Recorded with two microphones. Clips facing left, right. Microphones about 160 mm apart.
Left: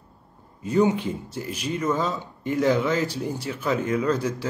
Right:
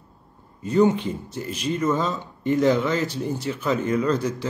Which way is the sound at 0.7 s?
10° left (ahead or behind).